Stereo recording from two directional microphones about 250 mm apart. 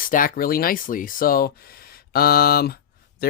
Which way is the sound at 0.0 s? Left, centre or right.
Left.